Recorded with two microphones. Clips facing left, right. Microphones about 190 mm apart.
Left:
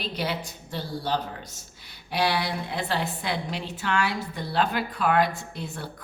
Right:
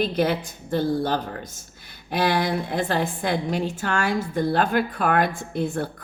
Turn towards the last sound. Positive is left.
turn(degrees=-50)  # may be behind; listen again after turning